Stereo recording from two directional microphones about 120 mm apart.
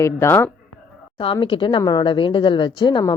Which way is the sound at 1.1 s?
45° left (ahead or behind).